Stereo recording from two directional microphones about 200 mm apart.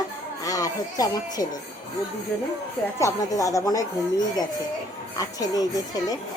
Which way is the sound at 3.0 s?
15° left (ahead or behind).